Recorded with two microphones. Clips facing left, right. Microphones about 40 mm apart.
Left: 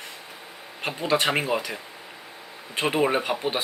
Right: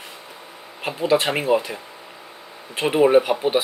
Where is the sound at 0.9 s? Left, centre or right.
Centre.